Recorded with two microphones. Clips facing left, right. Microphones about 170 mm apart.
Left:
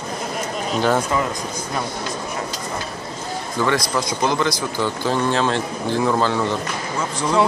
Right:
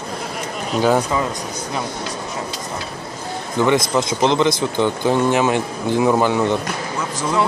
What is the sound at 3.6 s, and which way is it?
Speech, 20° right (ahead or behind).